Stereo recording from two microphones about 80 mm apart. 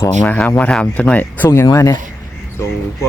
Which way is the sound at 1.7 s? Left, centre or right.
Left.